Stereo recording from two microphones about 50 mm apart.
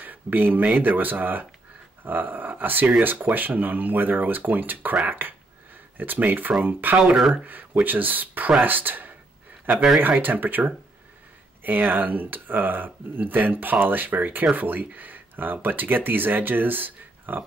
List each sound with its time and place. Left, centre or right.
0.0 s speech: right